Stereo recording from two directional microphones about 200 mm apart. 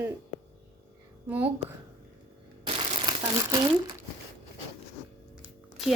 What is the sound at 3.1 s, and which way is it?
Crumpling, 20° right (ahead or behind).